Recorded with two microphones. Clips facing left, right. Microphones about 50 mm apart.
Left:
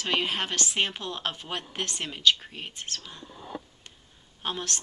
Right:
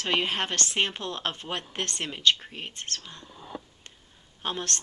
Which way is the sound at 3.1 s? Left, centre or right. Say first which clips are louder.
Left 1 dB; centre.